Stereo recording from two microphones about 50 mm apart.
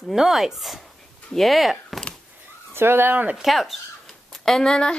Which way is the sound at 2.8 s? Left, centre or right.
Right.